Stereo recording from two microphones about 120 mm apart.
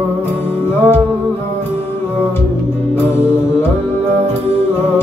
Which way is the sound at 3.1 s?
20° left (ahead or behind).